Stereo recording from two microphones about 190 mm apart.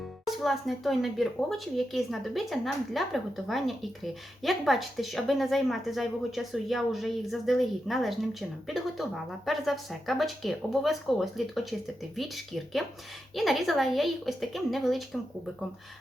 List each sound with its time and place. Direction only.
0.3 s speech: centre (ahead or behind)